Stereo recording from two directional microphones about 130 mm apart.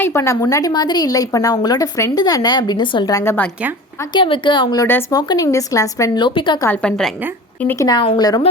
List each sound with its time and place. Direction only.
0.0 s speech: 20° left (ahead or behind)
0.5 s a woman's voice: 30° left (ahead or behind)
3.1 s speech: 20° left (ahead or behind)
4.1 s a woman's voice: 40° left (ahead or behind)
6.2 s a woman's voice: 40° left (ahead or behind)
6.7 s a woman's voice: 5° left (ahead or behind)
7.8 s a woman's voice: 30° left (ahead or behind)